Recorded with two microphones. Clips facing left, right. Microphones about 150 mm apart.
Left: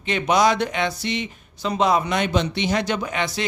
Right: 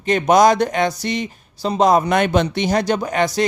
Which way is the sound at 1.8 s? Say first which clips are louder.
Right 5 dB; 45° right (ahead or behind).